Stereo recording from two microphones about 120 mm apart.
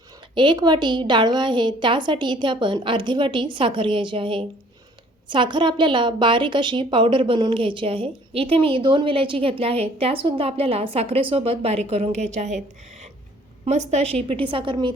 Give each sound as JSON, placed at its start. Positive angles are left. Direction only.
{"t": 0.3, "sound": "a woman's voice", "side_deg": -40}
{"t": 14.5, "sound": "a woman's voice", "side_deg": -45}